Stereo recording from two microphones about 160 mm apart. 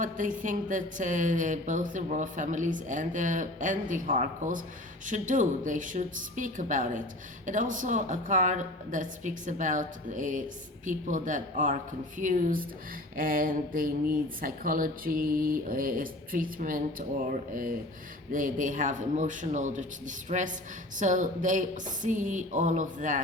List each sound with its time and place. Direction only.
0.0 s speech: 55° right (ahead or behind)